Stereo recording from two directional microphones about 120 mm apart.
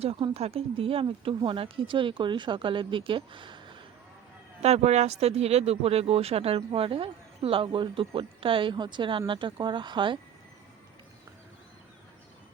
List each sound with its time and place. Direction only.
0.0 s speech: 55° right (ahead or behind)
4.6 s speech: 60° right (ahead or behind); by 10.2 s 40° right (ahead or behind)